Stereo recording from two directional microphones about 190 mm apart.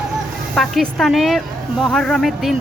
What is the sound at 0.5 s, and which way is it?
A woman's voice, centre (ahead or behind).